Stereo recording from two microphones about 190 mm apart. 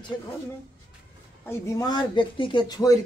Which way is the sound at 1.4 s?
15° left (ahead or behind).